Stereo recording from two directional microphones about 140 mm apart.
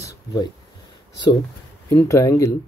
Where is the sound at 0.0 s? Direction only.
25° left (ahead or behind).